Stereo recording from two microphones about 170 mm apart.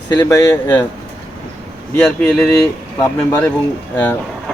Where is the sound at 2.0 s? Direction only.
10° left (ahead or behind).